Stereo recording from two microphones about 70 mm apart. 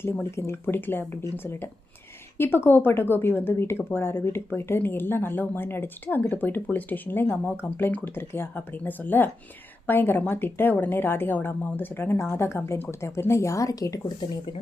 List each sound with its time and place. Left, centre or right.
0.0 s a woman's voice: left
0.6 s a woman's voice: left